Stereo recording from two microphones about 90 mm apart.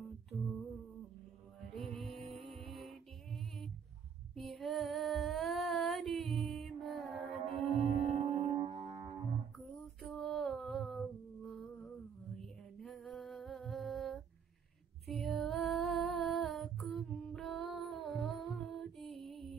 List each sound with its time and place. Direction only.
0.0 s humming: centre (ahead or behind)
1.6 s music: centre (ahead or behind)
4.4 s female singing: centre (ahead or behind)
6.1 s a sound: centre (ahead or behind)
7.4 s music: centre (ahead or behind)
7.8 s music: 90° right
8.5 s music: 50° right (ahead or behind)
8.8 s music: 35° right (ahead or behind)
10.1 s humming: centre (ahead or behind)
12.4 s music: 5° left (ahead or behind)